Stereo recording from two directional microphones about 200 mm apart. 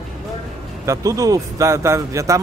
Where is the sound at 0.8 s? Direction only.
15° right (ahead or behind).